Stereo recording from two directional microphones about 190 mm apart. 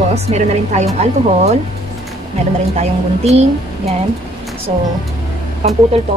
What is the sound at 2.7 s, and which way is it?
A woman's voice, 35° right (ahead or behind).